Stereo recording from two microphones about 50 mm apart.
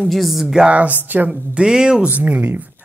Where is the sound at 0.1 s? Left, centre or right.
Centre.